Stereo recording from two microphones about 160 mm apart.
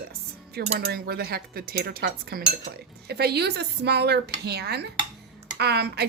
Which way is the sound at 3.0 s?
90° right.